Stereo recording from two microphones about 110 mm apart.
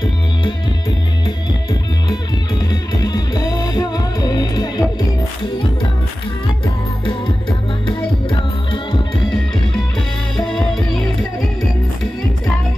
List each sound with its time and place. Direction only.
2.7 s music: 35° left (ahead or behind)
7.8 s music: 50° left (ahead or behind)
10.3 s music: 5° left (ahead or behind)